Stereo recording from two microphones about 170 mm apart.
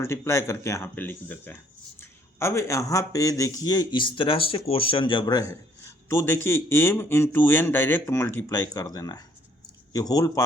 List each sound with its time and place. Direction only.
0.0 s speech: 15° left (ahead or behind)